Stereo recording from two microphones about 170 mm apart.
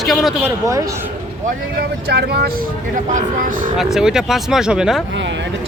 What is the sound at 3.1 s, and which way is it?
Speech, 55° right (ahead or behind).